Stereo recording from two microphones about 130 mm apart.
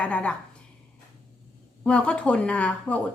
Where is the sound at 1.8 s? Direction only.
10° left (ahead or behind).